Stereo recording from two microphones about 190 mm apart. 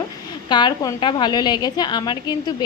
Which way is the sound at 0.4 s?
25° left (ahead or behind).